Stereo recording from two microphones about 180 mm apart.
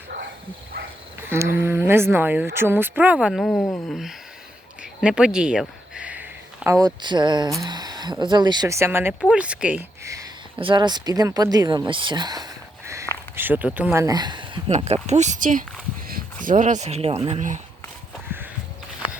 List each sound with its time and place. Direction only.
1.5 s speech: 10° right (ahead or behind)
3.5 s speech: 20° left (ahead or behind)
3.8 s a sound: centre (ahead or behind)
4.8 s speech: 5° right (ahead or behind); by 14.6 s 25° right (ahead or behind)
14.7 s speech: 35° right (ahead or behind)